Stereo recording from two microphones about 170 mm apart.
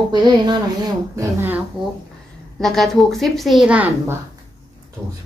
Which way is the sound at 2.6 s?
Centre (ahead or behind).